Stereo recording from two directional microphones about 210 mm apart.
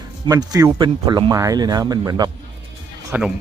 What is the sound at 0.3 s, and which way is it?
Speech, 15° right (ahead or behind).